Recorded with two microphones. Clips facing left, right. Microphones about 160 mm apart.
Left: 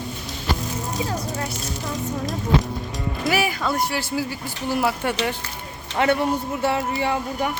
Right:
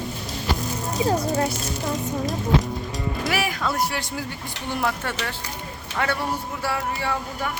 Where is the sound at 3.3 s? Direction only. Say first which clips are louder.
Left 4 dB; centre (ahead or behind).